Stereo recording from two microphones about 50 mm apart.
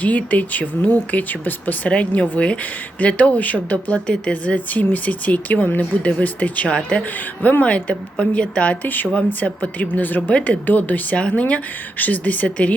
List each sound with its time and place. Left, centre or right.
0.0 s speech: left
1.9 s a woman's voice: left
8.8 s a woman's voice: left